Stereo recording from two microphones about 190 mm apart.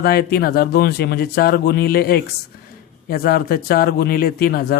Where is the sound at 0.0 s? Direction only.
55° left (ahead or behind).